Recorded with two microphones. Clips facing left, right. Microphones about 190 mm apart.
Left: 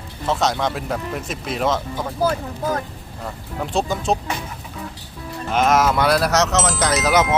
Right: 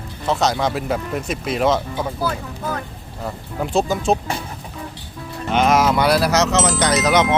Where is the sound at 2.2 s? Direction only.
40° left (ahead or behind).